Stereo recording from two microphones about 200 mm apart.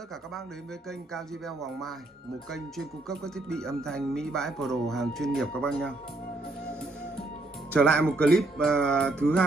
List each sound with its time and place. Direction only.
0.8 s speech: centre (ahead or behind)
7.7 s speech: 5° left (ahead or behind)